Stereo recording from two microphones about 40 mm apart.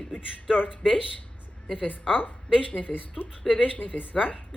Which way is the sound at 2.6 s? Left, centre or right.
Left.